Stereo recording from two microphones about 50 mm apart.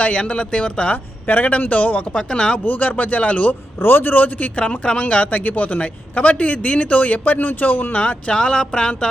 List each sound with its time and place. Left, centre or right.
0.0 s a man's voice: left
2.1 s a sound: centre
2.6 s speech: left
3.8 s a man's voice: left
7.9 s a man's voice: left
8.4 s a sound: centre